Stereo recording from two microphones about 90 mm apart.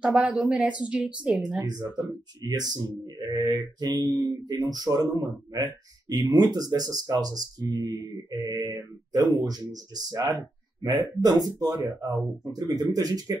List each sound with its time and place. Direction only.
0.0 s speech: 10° right (ahead or behind)
1.6 s speech: 40° right (ahead or behind)